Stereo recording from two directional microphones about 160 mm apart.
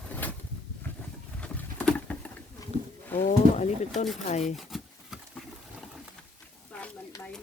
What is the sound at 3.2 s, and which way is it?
Pigeon, 45° left (ahead or behind).